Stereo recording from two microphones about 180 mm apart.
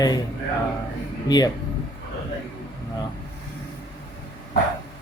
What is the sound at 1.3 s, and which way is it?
Speech, 20° left (ahead or behind).